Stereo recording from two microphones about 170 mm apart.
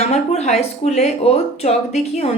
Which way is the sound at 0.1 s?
40° left (ahead or behind).